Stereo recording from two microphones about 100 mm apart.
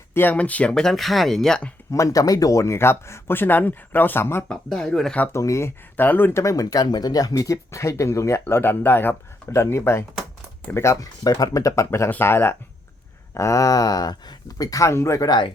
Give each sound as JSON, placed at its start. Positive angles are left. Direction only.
{"t": 0.1, "sound": "speech", "side_deg": 20}
{"t": 1.9, "sound": "speech", "side_deg": 35}
{"t": 4.4, "sound": "speech", "side_deg": 5}
{"t": 5.3, "sound": "speech", "side_deg": 30}
{"t": 6.4, "sound": "speech", "side_deg": 35}
{"t": 11.0, "sound": "speech", "side_deg": 40}
{"t": 15.3, "sound": "speech", "side_deg": 50}